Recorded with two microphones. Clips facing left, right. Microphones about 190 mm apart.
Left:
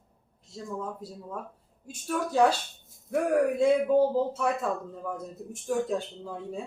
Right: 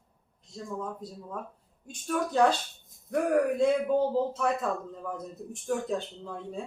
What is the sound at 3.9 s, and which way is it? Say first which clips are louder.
A man's voice: left 3 dB; 5° left (ahead or behind).